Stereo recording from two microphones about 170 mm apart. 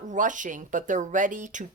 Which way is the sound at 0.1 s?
50° right (ahead or behind).